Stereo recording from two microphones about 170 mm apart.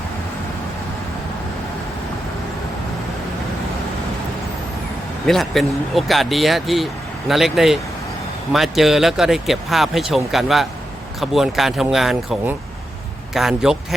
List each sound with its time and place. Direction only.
5.2 s speech: centre (ahead or behind)